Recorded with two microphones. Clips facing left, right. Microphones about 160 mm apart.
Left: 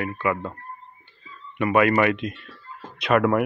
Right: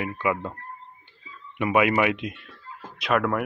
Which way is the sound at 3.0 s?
Centre (ahead or behind).